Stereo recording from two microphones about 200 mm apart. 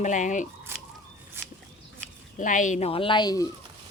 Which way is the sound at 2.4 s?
40° left (ahead or behind).